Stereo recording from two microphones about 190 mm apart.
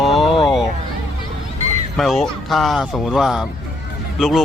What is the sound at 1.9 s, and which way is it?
Speech, centre (ahead or behind).